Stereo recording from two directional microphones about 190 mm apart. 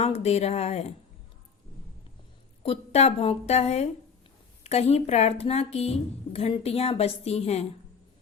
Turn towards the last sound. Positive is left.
turn(degrees=35)  # may be behind; listen again after turning